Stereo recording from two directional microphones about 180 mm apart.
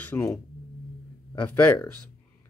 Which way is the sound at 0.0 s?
10° left (ahead or behind).